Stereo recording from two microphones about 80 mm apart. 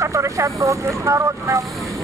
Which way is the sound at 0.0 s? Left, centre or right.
Right.